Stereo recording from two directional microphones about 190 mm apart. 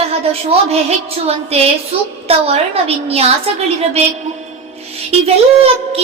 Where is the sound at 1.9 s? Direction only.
30° right (ahead or behind).